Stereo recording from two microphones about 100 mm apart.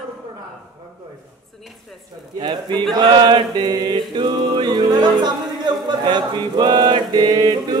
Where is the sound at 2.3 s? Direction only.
45° right (ahead or behind).